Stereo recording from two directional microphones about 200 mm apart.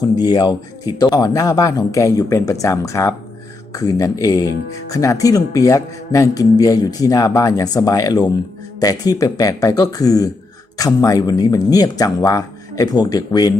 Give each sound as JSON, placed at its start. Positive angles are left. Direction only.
{"t": 0.2, "sound": "speech", "side_deg": 20}